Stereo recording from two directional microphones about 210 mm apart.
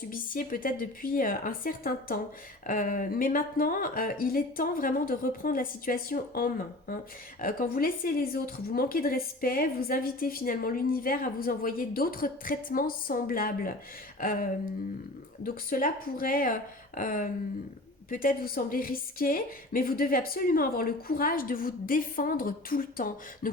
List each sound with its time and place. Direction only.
0.1 s a woman's voice: 40° left (ahead or behind)
14.2 s a sound: 40° left (ahead or behind)
15.4 s a woman's voice: 40° left (ahead or behind)